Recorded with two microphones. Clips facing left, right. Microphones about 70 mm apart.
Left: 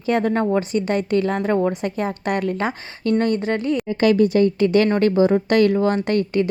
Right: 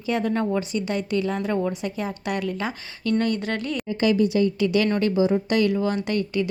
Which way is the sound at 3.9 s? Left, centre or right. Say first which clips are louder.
Left 4 dB; left.